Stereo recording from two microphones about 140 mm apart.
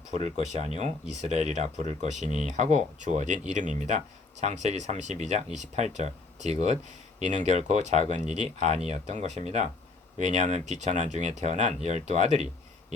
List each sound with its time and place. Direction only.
0.6 s speech: 50° right (ahead or behind)